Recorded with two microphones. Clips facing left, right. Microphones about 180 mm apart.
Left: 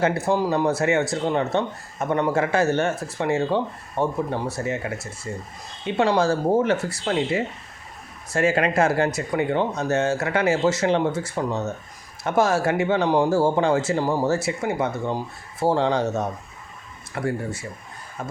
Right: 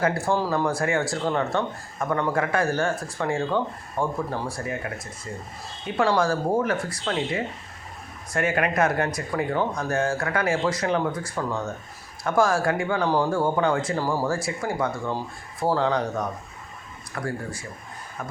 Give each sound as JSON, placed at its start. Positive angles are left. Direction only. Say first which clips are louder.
{"t": 0.0, "sound": "speech", "louder": "left 2 dB", "side_deg": 20}